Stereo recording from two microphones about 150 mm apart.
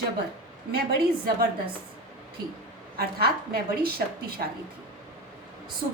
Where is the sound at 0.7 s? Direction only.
90° right.